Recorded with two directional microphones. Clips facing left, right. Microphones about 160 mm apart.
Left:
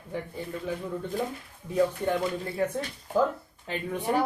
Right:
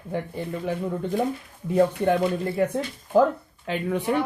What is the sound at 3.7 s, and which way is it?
Speech, 85° right.